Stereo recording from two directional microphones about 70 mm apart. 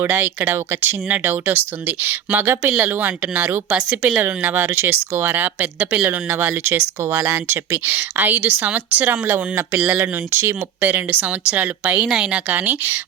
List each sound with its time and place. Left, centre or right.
0.0 s speech: right
2.6 s speech: centre
2.9 s speech: right
3.7 s speech: centre
4.2 s speech: right
7.2 s speech: right
7.4 s speech: right
7.9 s speech: right; by 12.4 s centre
12.5 s speech: right